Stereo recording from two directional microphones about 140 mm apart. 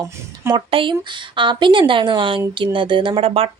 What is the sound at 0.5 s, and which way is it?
A woman's voice, 40° right (ahead or behind).